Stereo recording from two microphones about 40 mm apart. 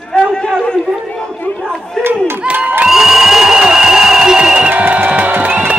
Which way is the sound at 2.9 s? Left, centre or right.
Centre.